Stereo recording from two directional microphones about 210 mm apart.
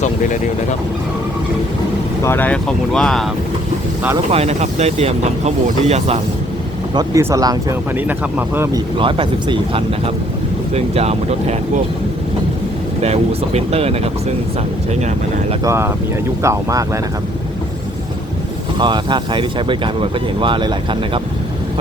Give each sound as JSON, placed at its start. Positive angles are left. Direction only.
{"t": 0.0, "sound": "speech", "side_deg": 40}
{"t": 2.2, "sound": "speech", "side_deg": 10}
{"t": 4.3, "sound": "speech", "side_deg": -30}
{"t": 6.9, "sound": "speech", "side_deg": -15}
{"t": 9.0, "sound": "speech", "side_deg": -25}
{"t": 13.0, "sound": "speech", "side_deg": -30}
{"t": 15.6, "sound": "speech", "side_deg": -10}
{"t": 18.8, "sound": "speech", "side_deg": -20}